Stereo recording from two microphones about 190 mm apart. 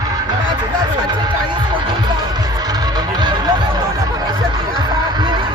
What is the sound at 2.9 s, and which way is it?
Music, 20° right (ahead or behind).